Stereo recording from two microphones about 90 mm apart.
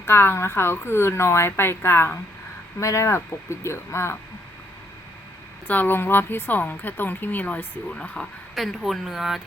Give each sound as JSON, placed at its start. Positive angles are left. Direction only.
{"t": 0.0, "sound": "a woman's voice", "side_deg": 25}
{"t": 5.6, "sound": "a woman's voice", "side_deg": 20}
{"t": 8.5, "sound": "speech", "side_deg": 0}